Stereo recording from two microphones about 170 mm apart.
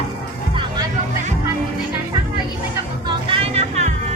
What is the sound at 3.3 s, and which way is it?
Music, 40° right (ahead or behind).